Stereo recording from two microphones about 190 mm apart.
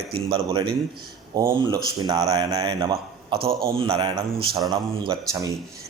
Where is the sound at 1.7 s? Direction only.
20° right (ahead or behind).